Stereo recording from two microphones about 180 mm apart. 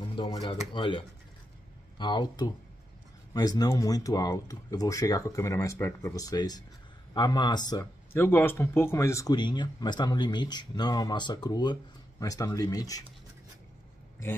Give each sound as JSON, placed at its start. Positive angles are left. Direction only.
{"t": 0.3, "sound": "speech", "side_deg": 25}